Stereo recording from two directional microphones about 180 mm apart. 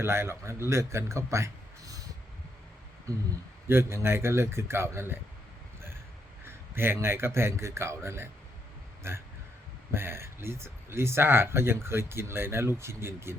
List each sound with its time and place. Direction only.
0.0 s a man's voice: 15° right (ahead or behind)
3.7 s speech: 15° right (ahead or behind)
6.4 s speech: 10° right (ahead or behind)